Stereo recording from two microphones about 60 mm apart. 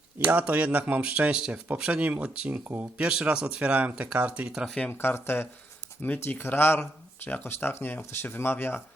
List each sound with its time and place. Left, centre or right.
0.3 s speech: right
1.4 s speech: centre
3.1 s speech: centre
4.9 s speech: left